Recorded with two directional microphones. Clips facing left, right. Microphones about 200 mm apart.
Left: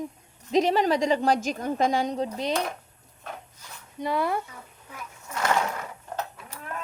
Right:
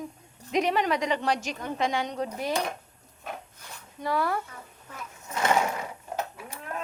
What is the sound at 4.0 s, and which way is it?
Speech, 20° left (ahead or behind).